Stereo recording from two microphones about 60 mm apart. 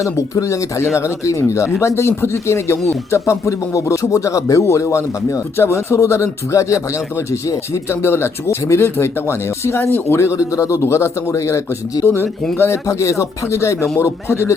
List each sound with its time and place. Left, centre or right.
0.0 s speech: left
1.8 s speech: left
8.0 s speech: left
10.8 s speech: left
12.0 s speech: left
12.9 s speech: left